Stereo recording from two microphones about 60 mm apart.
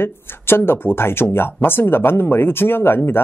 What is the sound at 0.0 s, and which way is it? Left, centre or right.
Speech, left.